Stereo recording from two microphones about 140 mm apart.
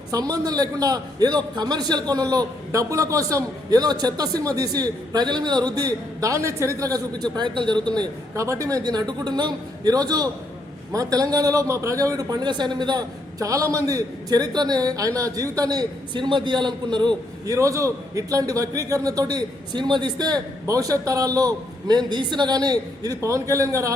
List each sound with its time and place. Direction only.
0.1 s a man's voice: 25° right (ahead or behind)